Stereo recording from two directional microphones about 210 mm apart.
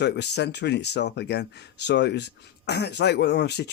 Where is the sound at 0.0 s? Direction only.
55° left (ahead or behind).